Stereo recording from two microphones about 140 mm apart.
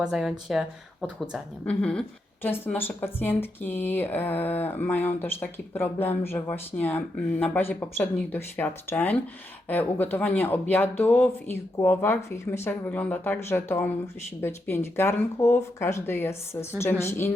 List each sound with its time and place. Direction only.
0.0 s speech: centre (ahead or behind)
1.6 s a woman's voice: 5° left (ahead or behind)